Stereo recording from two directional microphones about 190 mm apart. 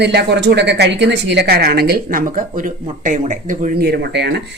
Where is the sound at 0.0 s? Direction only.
60° right (ahead or behind).